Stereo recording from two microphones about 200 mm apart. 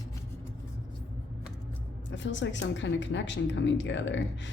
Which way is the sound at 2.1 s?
65° left (ahead or behind).